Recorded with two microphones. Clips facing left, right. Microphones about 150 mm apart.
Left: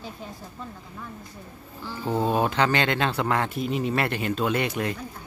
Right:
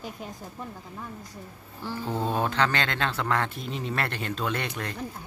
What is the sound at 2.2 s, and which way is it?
Speech, 10° left (ahead or behind).